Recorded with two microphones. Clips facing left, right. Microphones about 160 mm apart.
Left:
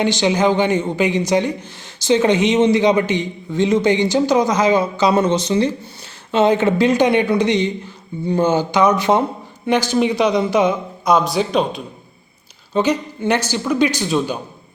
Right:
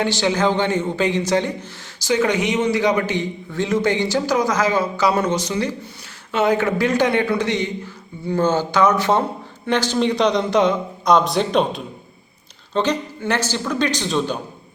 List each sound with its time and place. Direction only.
0.0 s a man's voice: 20° left (ahead or behind)